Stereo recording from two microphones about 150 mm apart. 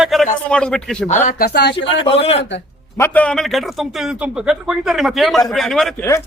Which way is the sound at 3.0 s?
10° left (ahead or behind).